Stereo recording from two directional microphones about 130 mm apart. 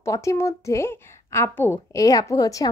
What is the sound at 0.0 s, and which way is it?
Speech, 25° left (ahead or behind).